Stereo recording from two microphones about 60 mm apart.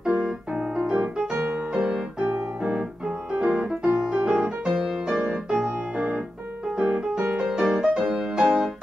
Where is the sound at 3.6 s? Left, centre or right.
Right.